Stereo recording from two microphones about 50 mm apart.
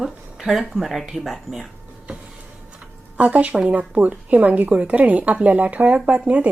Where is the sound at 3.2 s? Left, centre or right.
Right.